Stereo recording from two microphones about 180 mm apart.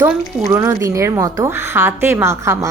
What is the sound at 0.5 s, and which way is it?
A woman's voice, 20° right (ahead or behind).